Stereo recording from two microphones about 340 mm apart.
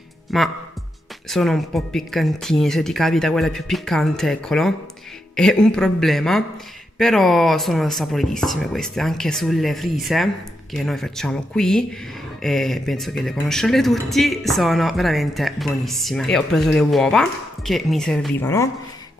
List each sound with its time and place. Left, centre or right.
0.3 s speech: centre